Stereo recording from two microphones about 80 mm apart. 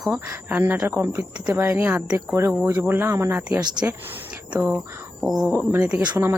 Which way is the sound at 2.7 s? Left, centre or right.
Right.